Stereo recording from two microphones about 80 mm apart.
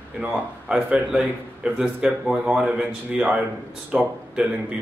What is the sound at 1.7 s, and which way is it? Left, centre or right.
A man's voice, centre.